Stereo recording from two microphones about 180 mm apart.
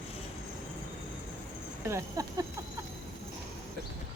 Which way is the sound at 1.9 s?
15° right (ahead or behind).